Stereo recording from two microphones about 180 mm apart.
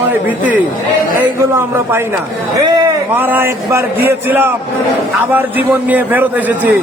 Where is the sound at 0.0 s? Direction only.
10° right (ahead or behind).